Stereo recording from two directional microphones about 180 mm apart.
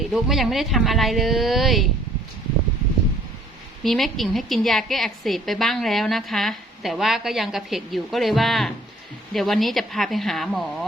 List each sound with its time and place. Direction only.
0.1 s a woman's voice: centre (ahead or behind)
3.8 s a woman's voice: centre (ahead or behind)